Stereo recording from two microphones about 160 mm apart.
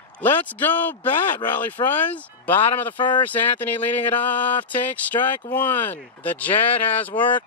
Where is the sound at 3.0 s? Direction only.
30° left (ahead or behind).